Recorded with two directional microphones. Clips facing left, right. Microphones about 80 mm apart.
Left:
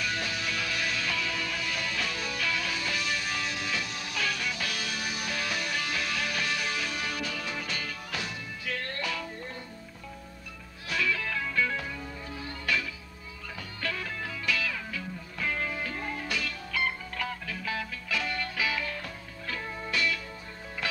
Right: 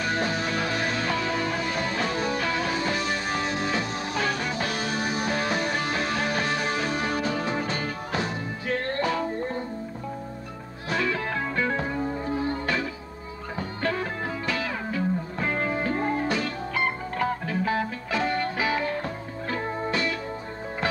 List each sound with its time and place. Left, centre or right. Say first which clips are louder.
0.0 s music: right 7 dB; right
10.9 s music: right 4 dB; right